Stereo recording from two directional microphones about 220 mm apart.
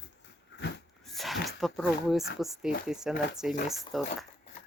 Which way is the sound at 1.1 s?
Centre (ahead or behind).